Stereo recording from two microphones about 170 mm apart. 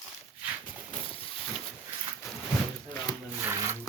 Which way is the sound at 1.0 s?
30° left (ahead or behind).